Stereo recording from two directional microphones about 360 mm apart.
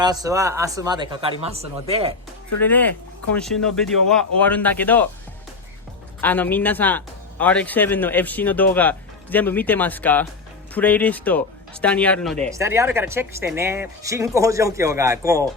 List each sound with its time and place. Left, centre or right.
0.0 s speech: centre
2.6 s speech: centre
6.2 s speech: centre